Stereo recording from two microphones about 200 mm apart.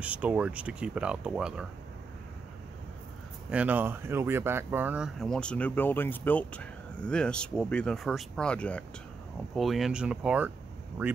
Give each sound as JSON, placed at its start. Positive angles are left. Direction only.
{"t": 0.0, "sound": "speech", "side_deg": -5}
{"t": 3.4, "sound": "speech", "side_deg": -5}